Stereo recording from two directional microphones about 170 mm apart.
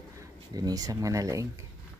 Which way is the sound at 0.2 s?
20° right (ahead or behind).